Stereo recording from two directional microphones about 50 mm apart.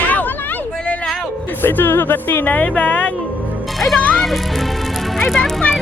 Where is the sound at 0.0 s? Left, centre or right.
Left.